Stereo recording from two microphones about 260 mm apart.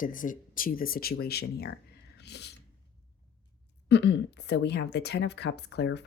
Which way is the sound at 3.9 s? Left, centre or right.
Left.